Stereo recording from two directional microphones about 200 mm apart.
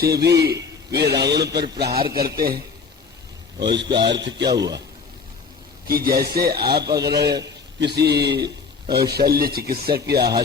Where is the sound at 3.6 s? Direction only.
60° right (ahead or behind).